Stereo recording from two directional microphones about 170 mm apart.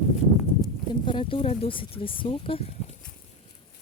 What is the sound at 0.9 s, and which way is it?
Speech, 30° left (ahead or behind).